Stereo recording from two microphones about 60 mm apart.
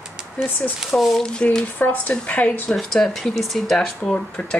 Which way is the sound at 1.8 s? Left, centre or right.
Left.